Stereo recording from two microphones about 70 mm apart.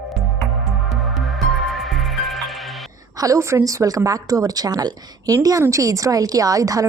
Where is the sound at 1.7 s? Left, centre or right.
Centre.